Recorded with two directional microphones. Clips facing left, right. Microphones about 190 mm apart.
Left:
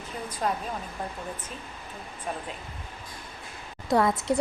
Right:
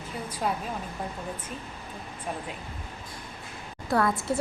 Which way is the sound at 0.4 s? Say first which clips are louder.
Left 1 dB; 5° right (ahead or behind).